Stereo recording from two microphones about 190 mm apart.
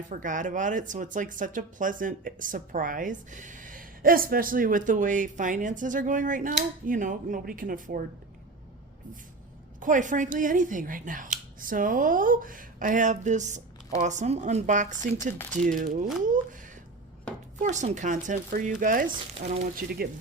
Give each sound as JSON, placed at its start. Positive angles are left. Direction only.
{"t": 0.1, "sound": "speech", "side_deg": -45}
{"t": 9.8, "sound": "speech", "side_deg": -40}
{"t": 17.6, "sound": "speech", "side_deg": -40}